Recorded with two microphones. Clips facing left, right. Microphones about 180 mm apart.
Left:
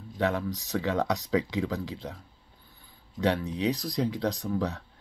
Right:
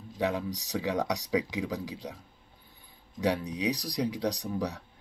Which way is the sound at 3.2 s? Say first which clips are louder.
Left 2 dB; 15° right (ahead or behind).